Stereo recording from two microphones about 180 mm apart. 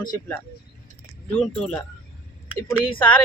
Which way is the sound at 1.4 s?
5° left (ahead or behind).